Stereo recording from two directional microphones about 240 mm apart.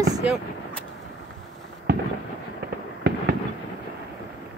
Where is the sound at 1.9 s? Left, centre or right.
Right.